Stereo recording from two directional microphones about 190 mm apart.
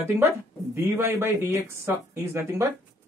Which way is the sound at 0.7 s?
10° right (ahead or behind).